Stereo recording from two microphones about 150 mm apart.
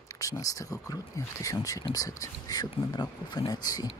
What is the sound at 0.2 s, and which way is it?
Speech, 20° left (ahead or behind).